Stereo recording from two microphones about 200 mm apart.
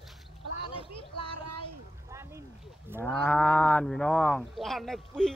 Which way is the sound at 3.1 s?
5° left (ahead or behind).